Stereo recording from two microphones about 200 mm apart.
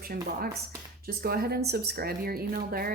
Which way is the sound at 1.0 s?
50° right (ahead or behind).